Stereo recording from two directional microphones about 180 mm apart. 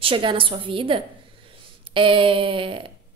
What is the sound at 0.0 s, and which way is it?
A woman's voice, 30° right (ahead or behind).